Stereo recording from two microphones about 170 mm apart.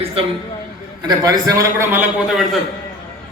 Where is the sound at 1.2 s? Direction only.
20° right (ahead or behind).